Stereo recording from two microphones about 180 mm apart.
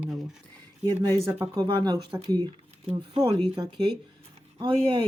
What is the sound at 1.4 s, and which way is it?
Speech, 20° right (ahead or behind).